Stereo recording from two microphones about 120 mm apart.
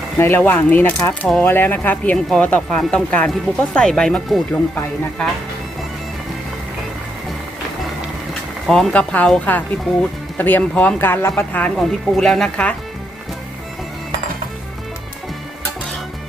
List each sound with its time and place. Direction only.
0.2 s speech: 20° left (ahead or behind)
8.6 s speech: 5° left (ahead or behind)
11.8 s speech: centre (ahead or behind)